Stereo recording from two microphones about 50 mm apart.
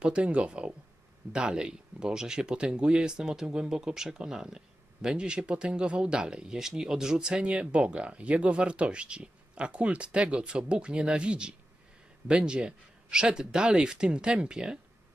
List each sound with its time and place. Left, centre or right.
0.0 s speech: right